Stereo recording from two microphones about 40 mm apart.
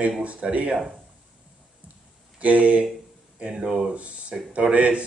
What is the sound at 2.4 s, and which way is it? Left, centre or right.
Speech, right.